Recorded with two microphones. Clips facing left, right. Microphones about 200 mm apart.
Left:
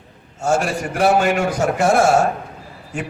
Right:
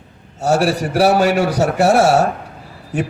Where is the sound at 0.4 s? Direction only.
35° right (ahead or behind).